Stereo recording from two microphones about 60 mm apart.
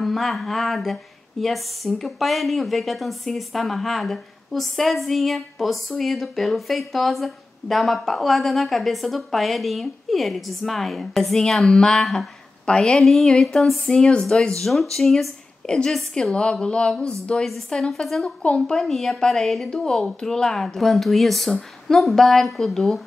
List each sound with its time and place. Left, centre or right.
0.0 s a woman's voice: centre
18.4 s speech: centre
18.8 s a woman's voice: centre